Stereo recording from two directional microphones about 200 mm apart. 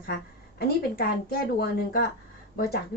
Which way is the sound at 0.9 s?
50° left (ahead or behind).